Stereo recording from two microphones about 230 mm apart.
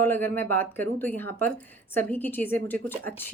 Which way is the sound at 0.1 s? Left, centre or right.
Centre.